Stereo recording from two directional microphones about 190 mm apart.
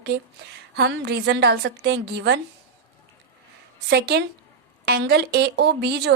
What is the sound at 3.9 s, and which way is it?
A woman's voice, 60° right (ahead or behind).